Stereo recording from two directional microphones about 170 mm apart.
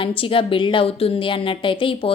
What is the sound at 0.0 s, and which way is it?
A woman's voice, 30° left (ahead or behind).